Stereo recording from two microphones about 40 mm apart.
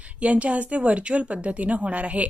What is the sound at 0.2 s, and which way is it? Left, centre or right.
A woman's voice, right.